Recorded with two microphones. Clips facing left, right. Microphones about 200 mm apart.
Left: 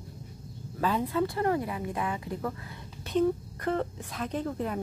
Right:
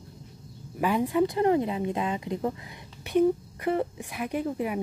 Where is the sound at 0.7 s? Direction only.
15° right (ahead or behind).